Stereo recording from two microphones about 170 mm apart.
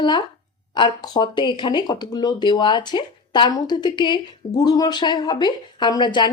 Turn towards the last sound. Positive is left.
turn(degrees=25)  # may be behind; listen again after turning